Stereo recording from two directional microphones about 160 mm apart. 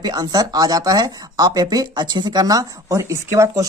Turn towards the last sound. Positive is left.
turn(degrees=-20)  # may be behind; listen again after turning